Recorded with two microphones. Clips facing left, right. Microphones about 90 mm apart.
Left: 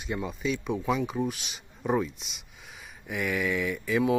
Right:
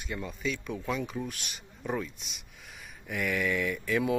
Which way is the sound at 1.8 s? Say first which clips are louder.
Left 6 dB; 20° left (ahead or behind).